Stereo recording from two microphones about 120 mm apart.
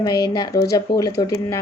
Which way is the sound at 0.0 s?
35° left (ahead or behind).